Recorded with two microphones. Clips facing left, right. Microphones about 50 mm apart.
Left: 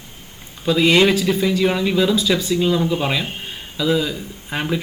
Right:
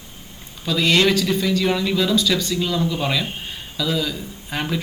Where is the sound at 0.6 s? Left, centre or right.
Centre.